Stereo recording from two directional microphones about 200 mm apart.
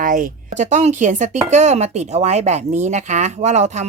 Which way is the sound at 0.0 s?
40° right (ahead or behind).